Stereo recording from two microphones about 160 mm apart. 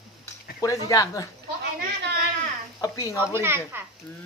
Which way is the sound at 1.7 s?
85° right.